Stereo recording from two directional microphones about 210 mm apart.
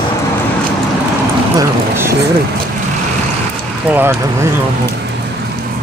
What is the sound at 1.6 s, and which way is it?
Speech, 15° right (ahead or behind).